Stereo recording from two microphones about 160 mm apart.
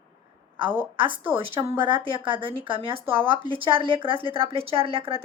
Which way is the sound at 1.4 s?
35° right (ahead or behind).